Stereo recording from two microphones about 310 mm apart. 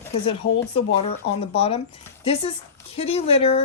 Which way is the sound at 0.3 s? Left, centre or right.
Centre.